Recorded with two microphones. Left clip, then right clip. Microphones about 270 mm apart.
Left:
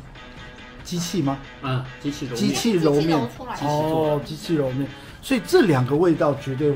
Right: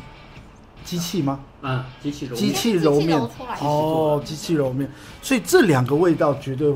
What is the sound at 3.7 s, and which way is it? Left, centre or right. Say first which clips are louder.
Speech: right 2 dB; right.